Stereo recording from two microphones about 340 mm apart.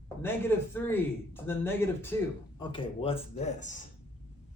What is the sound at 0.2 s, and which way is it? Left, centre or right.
Speech, centre.